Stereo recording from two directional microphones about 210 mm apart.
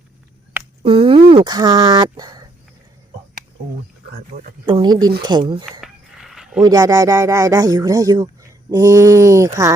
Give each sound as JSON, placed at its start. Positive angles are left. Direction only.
{"t": 0.8, "sound": "speech", "side_deg": -25}
{"t": 4.1, "sound": "a man's voice", "side_deg": -40}
{"t": 4.6, "sound": "speech", "side_deg": -20}
{"t": 5.8, "sound": "a sound", "side_deg": 0}
{"t": 6.6, "sound": "speech", "side_deg": -15}